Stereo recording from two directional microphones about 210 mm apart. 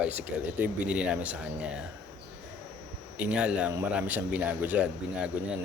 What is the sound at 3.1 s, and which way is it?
Speech, 5° right (ahead or behind).